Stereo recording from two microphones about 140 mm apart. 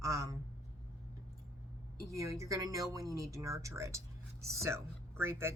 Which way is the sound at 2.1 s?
20° right (ahead or behind).